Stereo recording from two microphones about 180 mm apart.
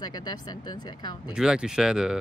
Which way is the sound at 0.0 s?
20° left (ahead or behind).